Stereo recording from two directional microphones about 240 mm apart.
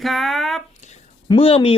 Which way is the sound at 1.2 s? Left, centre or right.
Left.